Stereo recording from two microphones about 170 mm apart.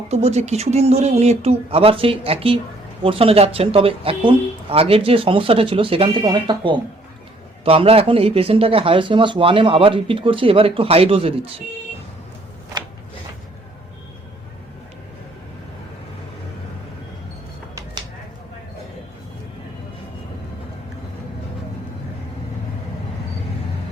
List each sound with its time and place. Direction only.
0.1 s speech: 40° right (ahead or behind)